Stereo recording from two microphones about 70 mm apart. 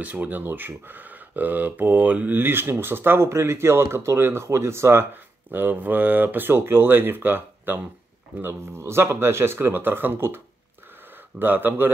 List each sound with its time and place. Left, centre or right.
0.0 s speech: right